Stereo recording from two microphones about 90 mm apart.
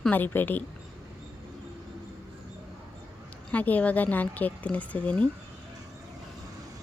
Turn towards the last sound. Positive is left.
turn(degrees=15)  # may be behind; listen again after turning